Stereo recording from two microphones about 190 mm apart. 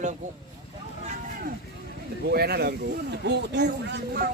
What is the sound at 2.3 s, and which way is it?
Speech, 55° right (ahead or behind).